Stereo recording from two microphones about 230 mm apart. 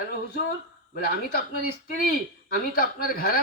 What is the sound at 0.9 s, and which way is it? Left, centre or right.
Speech, left.